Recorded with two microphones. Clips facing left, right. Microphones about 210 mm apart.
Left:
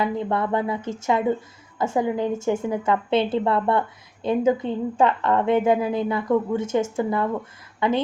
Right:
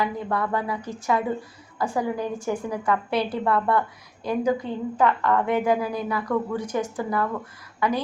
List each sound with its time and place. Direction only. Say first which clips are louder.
0.0 s a woman's voice: left 3 dB; 25° left (ahead or behind)